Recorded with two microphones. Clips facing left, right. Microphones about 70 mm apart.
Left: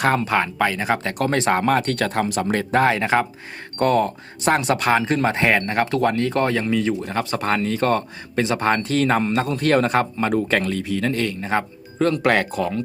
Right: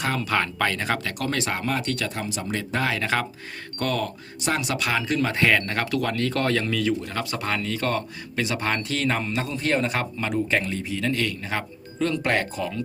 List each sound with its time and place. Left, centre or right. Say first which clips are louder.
0.3 s speech: left 4 dB; centre
1.0 s speech: left 7 dB; left
3.0 s speech: left 6 dB; left
3.8 s speech: left 8 dB; left
9.9 s speech: left 7 dB; left
10.3 s speech: left 3 dB; left
11.0 s speech: left 3 dB; left
12.2 s speech: left 6 dB; left